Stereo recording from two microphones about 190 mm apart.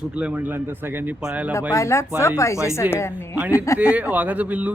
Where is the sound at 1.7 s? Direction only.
15° left (ahead or behind).